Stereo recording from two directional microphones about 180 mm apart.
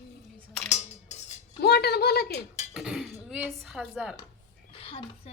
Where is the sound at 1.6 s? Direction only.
65° left (ahead or behind).